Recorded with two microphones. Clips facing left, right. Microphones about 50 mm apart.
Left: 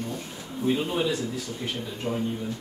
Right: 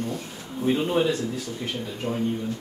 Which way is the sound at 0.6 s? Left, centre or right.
Right.